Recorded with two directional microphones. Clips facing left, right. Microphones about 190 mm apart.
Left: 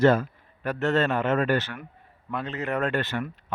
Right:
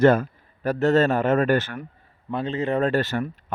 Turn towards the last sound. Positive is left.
turn(degrees=-40)  # may be behind; listen again after turning